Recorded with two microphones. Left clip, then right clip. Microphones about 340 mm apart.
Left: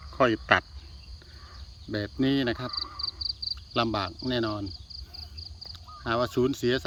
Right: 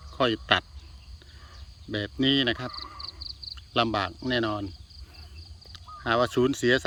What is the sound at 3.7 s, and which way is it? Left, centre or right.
Speech, centre.